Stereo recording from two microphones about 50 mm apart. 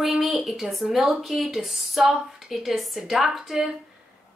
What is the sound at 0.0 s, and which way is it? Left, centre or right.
A woman's voice, centre.